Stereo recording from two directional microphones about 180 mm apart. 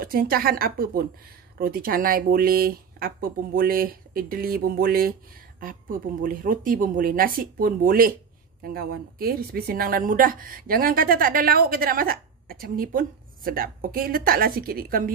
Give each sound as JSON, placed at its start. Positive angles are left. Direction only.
{"t": 0.0, "sound": "a woman's voice", "side_deg": -55}